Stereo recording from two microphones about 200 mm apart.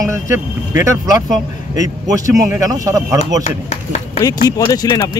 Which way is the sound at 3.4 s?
35° left (ahead or behind).